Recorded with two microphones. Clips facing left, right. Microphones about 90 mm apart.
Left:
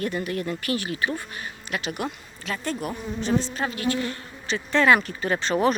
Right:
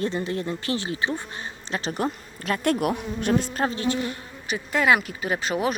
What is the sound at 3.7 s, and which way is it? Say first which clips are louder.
Speech: right 1 dB; 30° right (ahead or behind).